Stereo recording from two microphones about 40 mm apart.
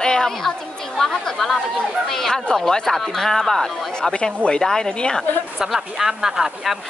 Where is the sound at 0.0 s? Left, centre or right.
Centre.